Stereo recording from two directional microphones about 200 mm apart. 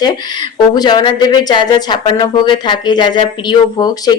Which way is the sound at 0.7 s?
20° left (ahead or behind).